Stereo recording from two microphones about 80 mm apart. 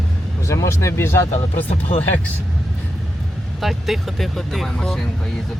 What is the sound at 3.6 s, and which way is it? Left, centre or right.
Speech, centre.